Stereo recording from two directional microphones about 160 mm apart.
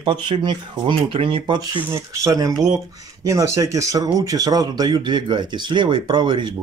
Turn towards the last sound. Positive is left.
turn(degrees=-30)  # may be behind; listen again after turning